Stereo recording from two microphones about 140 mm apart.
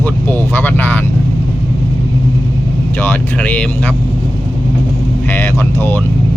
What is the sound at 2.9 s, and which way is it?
Speech, 15° left (ahead or behind).